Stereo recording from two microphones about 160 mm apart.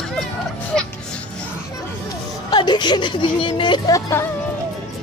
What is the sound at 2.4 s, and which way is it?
Speech, 30° left (ahead or behind).